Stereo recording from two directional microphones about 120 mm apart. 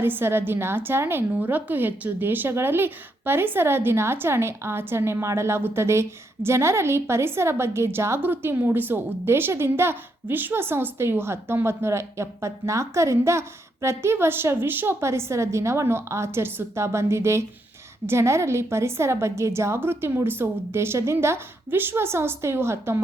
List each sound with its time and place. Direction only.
0.0 s a woman's voice: 20° right (ahead or behind)